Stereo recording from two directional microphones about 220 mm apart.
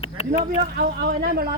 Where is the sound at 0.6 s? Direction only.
45° right (ahead or behind).